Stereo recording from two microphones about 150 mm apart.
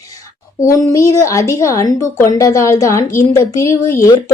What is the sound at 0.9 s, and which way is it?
A woman's voice, 20° left (ahead or behind).